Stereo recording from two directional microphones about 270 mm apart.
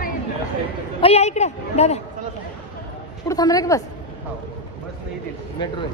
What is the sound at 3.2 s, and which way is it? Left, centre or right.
Speech, centre.